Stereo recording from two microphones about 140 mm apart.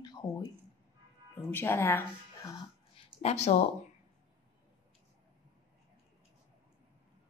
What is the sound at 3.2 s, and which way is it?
Speech, 55° left (ahead or behind).